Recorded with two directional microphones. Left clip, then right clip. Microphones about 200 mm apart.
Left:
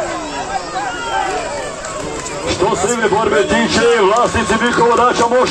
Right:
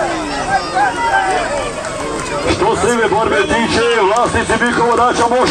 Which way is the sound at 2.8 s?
30° right (ahead or behind).